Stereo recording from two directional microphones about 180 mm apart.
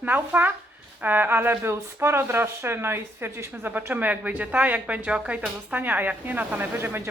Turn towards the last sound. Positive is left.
turn(degrees=-10)  # may be behind; listen again after turning